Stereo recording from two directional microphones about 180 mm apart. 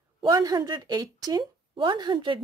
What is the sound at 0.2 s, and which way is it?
A woman's voice, 20° right (ahead or behind).